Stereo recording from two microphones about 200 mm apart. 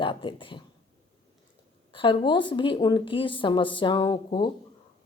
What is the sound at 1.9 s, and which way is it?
Speech, 25° left (ahead or behind).